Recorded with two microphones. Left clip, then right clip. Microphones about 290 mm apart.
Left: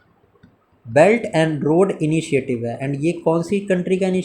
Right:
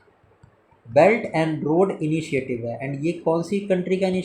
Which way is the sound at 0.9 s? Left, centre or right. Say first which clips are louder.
Left 3 dB; left.